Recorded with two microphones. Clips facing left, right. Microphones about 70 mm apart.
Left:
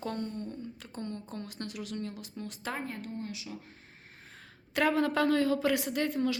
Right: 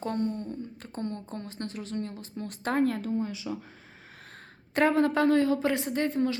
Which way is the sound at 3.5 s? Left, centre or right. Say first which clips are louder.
Right 8 dB; right.